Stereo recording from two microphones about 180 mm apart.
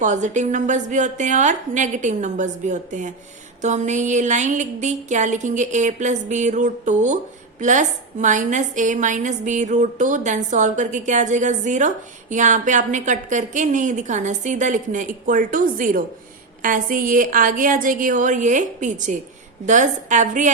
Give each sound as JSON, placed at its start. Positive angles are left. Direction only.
{"t": 0.0, "sound": "a woman's voice", "side_deg": -45}